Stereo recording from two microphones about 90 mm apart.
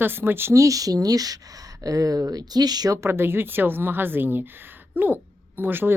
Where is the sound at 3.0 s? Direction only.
25° right (ahead or behind).